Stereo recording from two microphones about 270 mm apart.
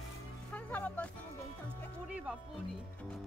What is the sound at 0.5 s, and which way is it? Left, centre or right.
Music, centre.